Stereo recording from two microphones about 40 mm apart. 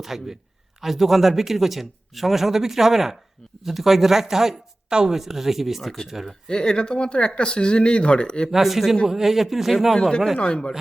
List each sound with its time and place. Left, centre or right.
0.0 s speech: centre
6.5 s speech: left
8.4 s speech: centre
10.3 s speech: left